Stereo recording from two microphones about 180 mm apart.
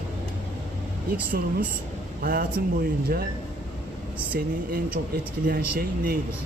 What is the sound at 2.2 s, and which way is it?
Speech, 50° right (ahead or behind).